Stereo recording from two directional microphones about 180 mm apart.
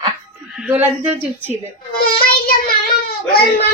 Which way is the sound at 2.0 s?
55° left (ahead or behind).